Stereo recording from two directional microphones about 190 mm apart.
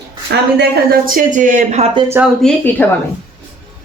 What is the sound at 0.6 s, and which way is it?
Speech, 45° right (ahead or behind).